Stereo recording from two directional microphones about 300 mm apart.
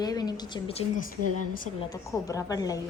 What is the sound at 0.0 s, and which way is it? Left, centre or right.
A woman's voice, centre.